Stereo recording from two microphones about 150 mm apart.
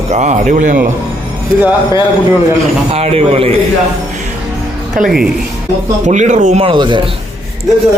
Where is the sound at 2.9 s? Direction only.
45° right (ahead or behind).